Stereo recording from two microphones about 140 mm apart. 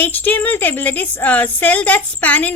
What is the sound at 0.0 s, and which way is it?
Speech, 15° left (ahead or behind).